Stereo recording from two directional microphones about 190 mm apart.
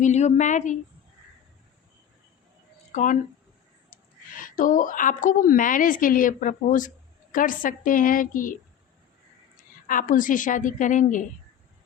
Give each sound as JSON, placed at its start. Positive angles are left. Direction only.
{"t": 0.0, "sound": "a woman's voice", "side_deg": 35}
{"t": 2.9, "sound": "speech", "side_deg": 40}
{"t": 4.4, "sound": "a woman's voice", "side_deg": 45}
{"t": 9.8, "sound": "a woman's voice", "side_deg": 45}